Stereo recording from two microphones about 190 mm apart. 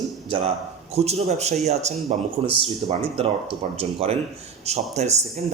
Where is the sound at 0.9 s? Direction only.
35° right (ahead or behind).